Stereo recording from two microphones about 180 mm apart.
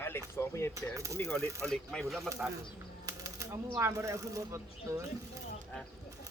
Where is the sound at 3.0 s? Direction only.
20° right (ahead or behind).